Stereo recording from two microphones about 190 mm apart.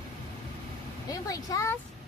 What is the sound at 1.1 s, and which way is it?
Speech, 20° left (ahead or behind).